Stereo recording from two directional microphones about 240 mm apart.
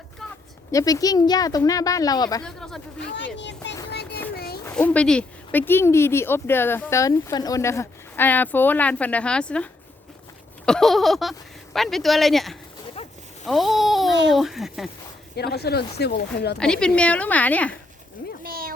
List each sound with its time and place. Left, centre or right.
0.7 s speech: centre
2.4 s speech: centre
3.2 s speech: left
4.4 s children playing: left
4.6 s speech: centre
10.7 s speech: centre
13.4 s a sound: centre
14.3 s speech: centre
15.4 s speech: left
16.6 s speech: centre
18.4 s a sound: right